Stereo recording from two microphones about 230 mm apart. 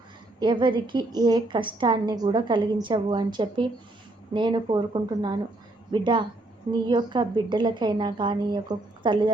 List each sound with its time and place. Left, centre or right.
0.3 s a woman's voice: right